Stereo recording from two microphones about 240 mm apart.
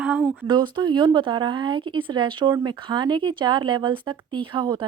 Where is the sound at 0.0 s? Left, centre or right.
Centre.